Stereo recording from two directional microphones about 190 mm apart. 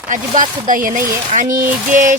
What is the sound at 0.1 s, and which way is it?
Speech, 45° right (ahead or behind).